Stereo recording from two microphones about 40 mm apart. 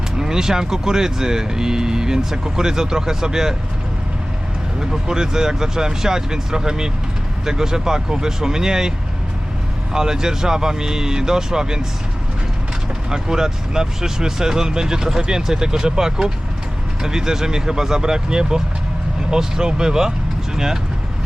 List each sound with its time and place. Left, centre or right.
0.2 s speech: centre
4.8 s speech: centre
9.9 s speech: centre
13.1 s speech: centre